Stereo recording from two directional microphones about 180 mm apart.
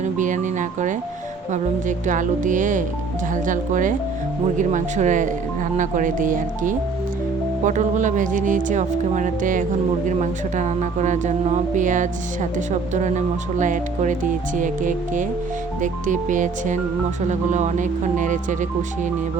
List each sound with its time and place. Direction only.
0.0 s music: 45° right (ahead or behind)
1.9 s a woman's voice: 45° right (ahead or behind)